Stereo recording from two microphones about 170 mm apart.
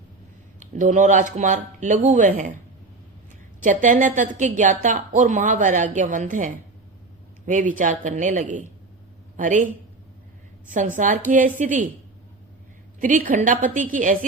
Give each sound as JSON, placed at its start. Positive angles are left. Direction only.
{"t": 0.8, "sound": "a woman's voice", "side_deg": -45}
{"t": 3.6, "sound": "a woman's voice", "side_deg": -50}
{"t": 10.7, "sound": "a woman's voice", "side_deg": -50}
{"t": 13.0, "sound": "a woman's voice", "side_deg": -50}